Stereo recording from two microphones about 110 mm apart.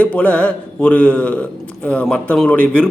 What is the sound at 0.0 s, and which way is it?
A man's voice, 10° left (ahead or behind).